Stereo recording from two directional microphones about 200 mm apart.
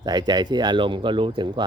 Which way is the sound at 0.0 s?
20° right (ahead or behind).